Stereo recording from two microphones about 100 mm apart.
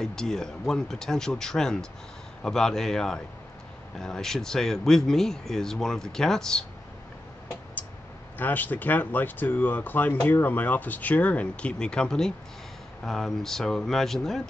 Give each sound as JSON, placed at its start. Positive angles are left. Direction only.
{"t": 0.0, "sound": "speech", "side_deg": 5}
{"t": 8.4, "sound": "speech", "side_deg": 20}